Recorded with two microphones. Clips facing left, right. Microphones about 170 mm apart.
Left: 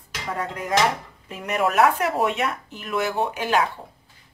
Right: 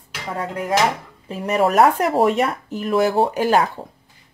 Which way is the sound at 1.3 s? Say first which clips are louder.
Right 5 dB; 35° right (ahead or behind).